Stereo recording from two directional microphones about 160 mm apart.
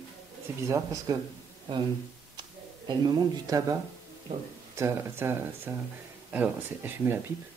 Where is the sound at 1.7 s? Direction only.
30° right (ahead or behind).